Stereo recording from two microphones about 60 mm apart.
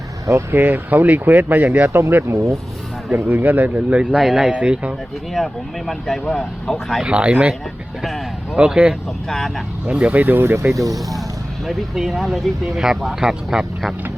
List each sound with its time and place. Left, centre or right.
0.5 s speech: right
1.9 s speech: right
3.3 s speech: right
3.9 s speech: centre
4.3 s speech: centre
4.5 s speech: centre
5.3 s speech: centre
7.0 s speech: centre
8.5 s speech: centre
9.3 s speech: centre
9.8 s speech: centre; by 10.7 s right
10.8 s speech: right
11.1 s speech: centre